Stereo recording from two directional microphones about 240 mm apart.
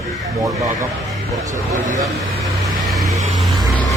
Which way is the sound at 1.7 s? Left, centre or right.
Right.